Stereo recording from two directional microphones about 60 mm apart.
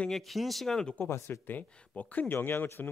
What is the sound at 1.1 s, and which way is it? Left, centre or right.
Speech, left.